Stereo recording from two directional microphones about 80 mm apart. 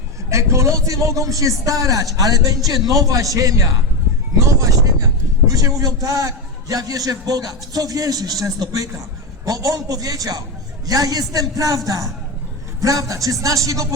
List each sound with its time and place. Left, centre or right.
0.3 s a man's voice: right
12.8 s a man's voice: right